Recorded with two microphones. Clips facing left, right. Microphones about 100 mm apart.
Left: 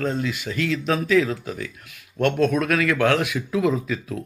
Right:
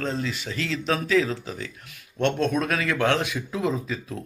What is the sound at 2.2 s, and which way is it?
Speech, 30° right (ahead or behind).